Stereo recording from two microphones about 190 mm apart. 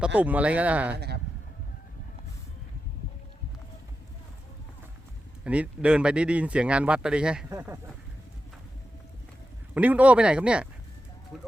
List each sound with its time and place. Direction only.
0.0 s speech: 10° right (ahead or behind)
0.9 s speech: 60° right (ahead or behind)
5.4 s speech: 5° right (ahead or behind)
9.7 s speech: 10° right (ahead or behind)